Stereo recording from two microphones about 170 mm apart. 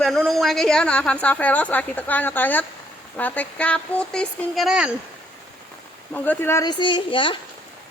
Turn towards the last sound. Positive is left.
turn(degrees=30)  # may be behind; listen again after turning